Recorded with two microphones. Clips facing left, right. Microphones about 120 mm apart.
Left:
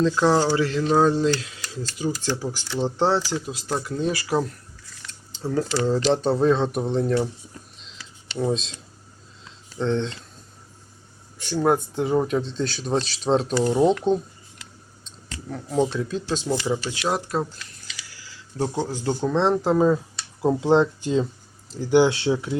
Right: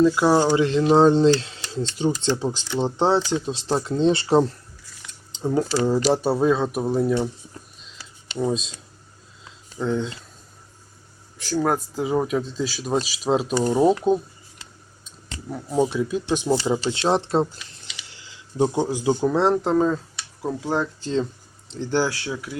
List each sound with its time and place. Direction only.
0.0 s speech: 10° right (ahead or behind); by 4.5 s 30° right (ahead or behind)
5.0 s speech: 15° right (ahead or behind)
8.4 s speech: centre (ahead or behind)
9.4 s a sound: 5° right (ahead or behind)
11.3 s speech: centre (ahead or behind)
15.4 s speech: 10° right (ahead or behind)
16.6 s speech: 30° right (ahead or behind)
19.2 s speech: 5° right (ahead or behind)
20.4 s speech: 25° left (ahead or behind)
21.7 s speech: 10° left (ahead or behind); by 22.5 s 25° left (ahead or behind)